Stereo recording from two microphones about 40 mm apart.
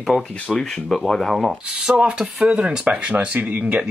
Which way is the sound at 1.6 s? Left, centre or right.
Right.